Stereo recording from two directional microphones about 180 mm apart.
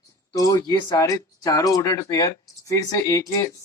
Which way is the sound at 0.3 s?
20° left (ahead or behind).